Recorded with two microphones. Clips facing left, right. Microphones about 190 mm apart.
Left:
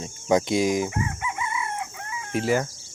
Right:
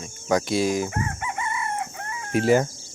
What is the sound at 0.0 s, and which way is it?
Speech, 20° left (ahead or behind).